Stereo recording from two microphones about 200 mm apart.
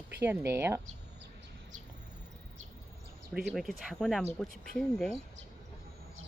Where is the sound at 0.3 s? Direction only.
15° right (ahead or behind).